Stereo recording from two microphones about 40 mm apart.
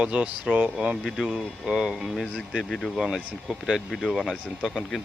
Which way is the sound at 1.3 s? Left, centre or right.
Centre.